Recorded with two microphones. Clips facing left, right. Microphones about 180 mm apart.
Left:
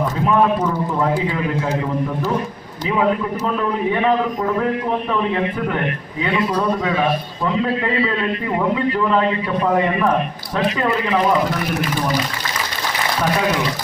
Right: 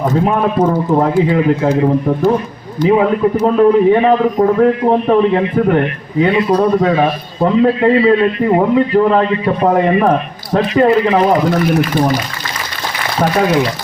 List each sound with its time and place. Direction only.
0.3 s a man's voice: 50° right (ahead or behind)
1.8 s a man's voice: 60° right (ahead or behind)
3.4 s a man's voice: 45° right (ahead or behind)